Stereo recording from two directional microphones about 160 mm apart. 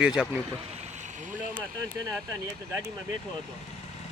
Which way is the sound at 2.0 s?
20° right (ahead or behind).